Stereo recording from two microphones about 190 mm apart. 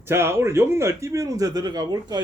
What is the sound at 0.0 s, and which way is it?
Speech, 15° right (ahead or behind).